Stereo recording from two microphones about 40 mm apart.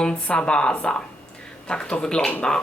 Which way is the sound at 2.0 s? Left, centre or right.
Centre.